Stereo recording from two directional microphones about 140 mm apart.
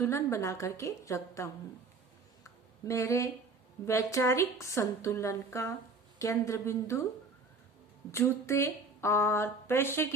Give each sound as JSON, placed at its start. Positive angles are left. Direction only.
{"t": 0.0, "sound": "a woman's voice", "side_deg": 20}
{"t": 2.8, "sound": "a woman's voice", "side_deg": 20}
{"t": 8.1, "sound": "a woman's voice", "side_deg": 20}